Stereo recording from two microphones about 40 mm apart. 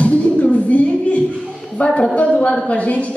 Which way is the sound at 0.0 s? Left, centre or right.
Left.